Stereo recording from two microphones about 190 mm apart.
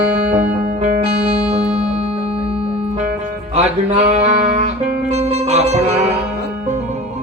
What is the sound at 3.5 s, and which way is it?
Music, 35° right (ahead or behind).